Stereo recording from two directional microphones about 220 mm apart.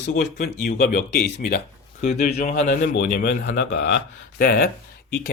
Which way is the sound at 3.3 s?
45° left (ahead or behind).